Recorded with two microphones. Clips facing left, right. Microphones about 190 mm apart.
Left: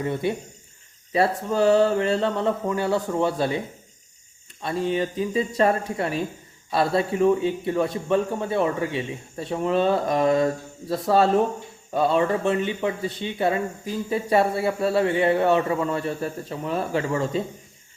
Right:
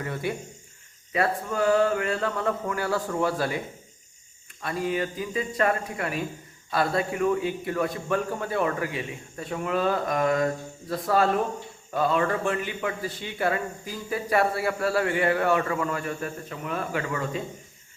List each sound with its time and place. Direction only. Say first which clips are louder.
0.0 s speech: left 5 dB; 25° left (ahead or behind)
4.6 s speech: left 3 dB; 25° left (ahead or behind)